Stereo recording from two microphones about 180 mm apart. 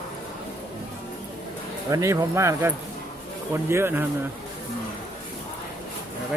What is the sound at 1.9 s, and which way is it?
Speech, 20° right (ahead or behind).